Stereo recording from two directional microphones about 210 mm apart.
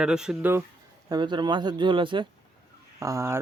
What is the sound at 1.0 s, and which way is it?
Speech, 20° right (ahead or behind).